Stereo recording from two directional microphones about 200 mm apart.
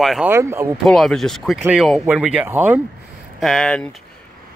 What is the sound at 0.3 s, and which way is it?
Speech, 10° right (ahead or behind).